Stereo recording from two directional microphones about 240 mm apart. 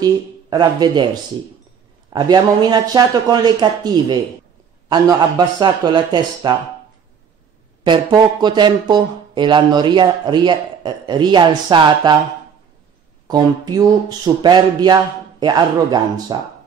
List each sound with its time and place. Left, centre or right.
0.0 s speech: centre
2.1 s speech: centre
5.6 s speech: centre
7.8 s speech: centre
13.3 s speech: centre